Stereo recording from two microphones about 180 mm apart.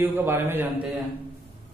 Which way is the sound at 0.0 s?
15° right (ahead or behind).